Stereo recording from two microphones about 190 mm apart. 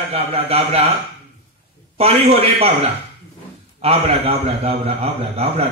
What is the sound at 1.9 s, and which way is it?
A man's voice, 30° right (ahead or behind).